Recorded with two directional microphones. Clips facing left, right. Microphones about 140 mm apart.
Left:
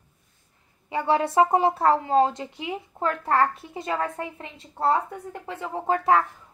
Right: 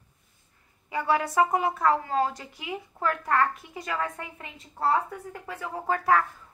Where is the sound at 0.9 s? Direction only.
25° left (ahead or behind).